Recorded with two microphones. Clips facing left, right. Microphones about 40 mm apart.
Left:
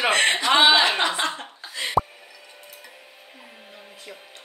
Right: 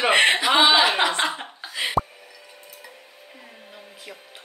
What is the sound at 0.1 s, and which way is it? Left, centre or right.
Chuckle, centre.